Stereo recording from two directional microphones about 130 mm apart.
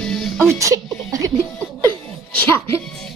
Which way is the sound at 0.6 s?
25° right (ahead or behind).